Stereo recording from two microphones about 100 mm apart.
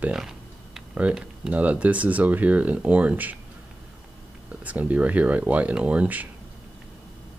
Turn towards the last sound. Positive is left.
turn(degrees=-15)  # may be behind; listen again after turning